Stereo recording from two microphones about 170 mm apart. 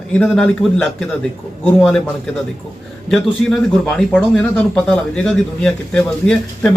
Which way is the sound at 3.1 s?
Centre (ahead or behind).